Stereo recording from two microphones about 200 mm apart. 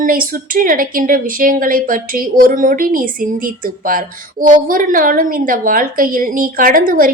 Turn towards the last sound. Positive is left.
turn(degrees=-45)  # may be behind; listen again after turning